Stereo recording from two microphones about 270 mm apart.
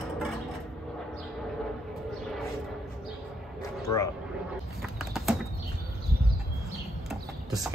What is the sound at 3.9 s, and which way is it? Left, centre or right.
Speech, left.